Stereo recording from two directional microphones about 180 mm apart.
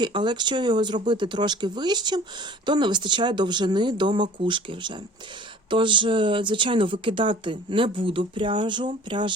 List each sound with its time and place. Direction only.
0.0 s speech: 25° right (ahead or behind)